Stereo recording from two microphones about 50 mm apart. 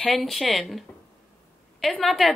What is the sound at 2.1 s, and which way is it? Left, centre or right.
Speech, centre.